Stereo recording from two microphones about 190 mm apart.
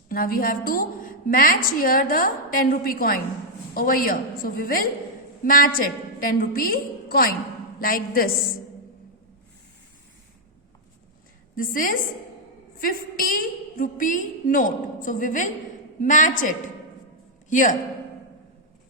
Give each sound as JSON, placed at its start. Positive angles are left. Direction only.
{"t": 0.1, "sound": "a woman's voice", "side_deg": 50}
{"t": 11.5, "sound": "a woman's voice", "side_deg": 45}